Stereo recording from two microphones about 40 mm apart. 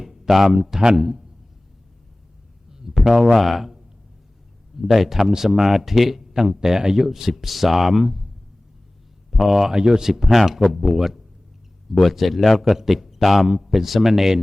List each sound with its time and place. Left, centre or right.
0.0 s speech: centre
0.8 s speech: right
3.0 s a man's voice: centre
4.8 s speech: centre
9.3 s speech: centre
9.7 s a man's voice: centre